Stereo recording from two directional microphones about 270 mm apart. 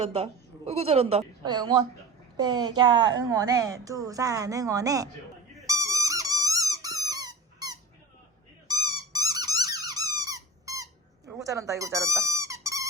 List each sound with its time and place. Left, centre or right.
0.0 s a woman's voice: right
5.6 s dog: centre
7.1 s squeak: centre
11.3 s dog: centre